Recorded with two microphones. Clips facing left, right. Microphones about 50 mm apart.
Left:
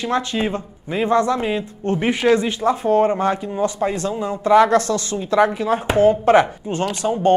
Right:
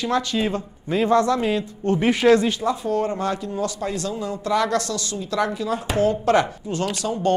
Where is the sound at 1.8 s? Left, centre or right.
Left.